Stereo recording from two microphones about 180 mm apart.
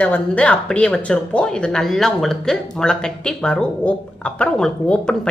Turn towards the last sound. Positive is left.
turn(degrees=5)  # may be behind; listen again after turning